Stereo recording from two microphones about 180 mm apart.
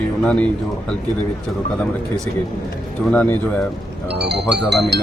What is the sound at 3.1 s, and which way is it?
Speech, 10° left (ahead or behind).